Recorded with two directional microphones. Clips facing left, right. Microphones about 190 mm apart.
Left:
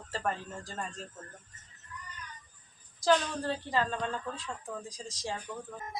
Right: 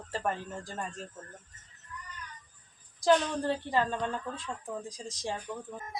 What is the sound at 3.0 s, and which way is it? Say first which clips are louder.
A woman's voice: right 2 dB; 15° right (ahead or behind).